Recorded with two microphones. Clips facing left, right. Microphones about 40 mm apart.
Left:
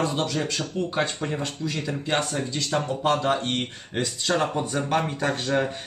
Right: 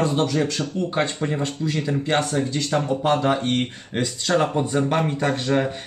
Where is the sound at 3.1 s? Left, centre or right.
Centre.